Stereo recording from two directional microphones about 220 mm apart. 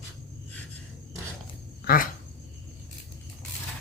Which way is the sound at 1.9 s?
45° left (ahead or behind).